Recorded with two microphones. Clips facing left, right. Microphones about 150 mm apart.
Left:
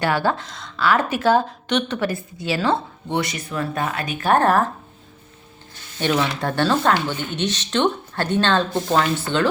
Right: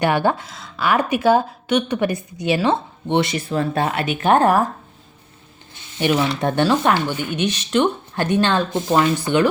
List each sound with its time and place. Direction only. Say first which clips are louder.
0.0 s speech: right 3 dB; 20° right (ahead or behind)
4.2 s speech: right 2 dB; 15° right (ahead or behind)
6.0 s speech: right 2 dB; 10° right (ahead or behind)